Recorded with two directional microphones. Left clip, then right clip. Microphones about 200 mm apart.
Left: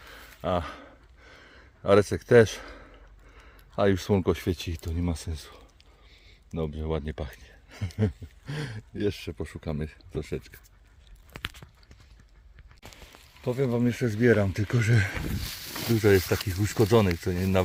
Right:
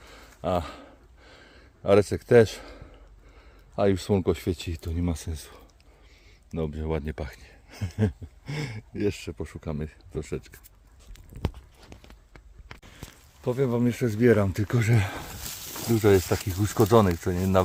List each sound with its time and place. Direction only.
0.0 s a sound: 5° right (ahead or behind)
3.8 s speech: 5° left (ahead or behind)
4.9 s speech: 5° right (ahead or behind)
13.4 s speech: centre (ahead or behind)